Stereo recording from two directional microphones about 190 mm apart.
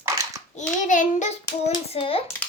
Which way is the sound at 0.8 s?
45° left (ahead or behind).